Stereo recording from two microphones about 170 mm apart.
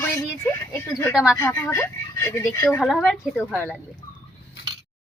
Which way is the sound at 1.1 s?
5° right (ahead or behind).